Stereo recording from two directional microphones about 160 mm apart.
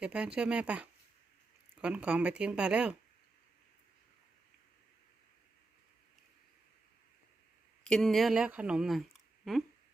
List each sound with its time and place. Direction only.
0.0 s speech: 5° right (ahead or behind)
7.9 s speech: 5° left (ahead or behind)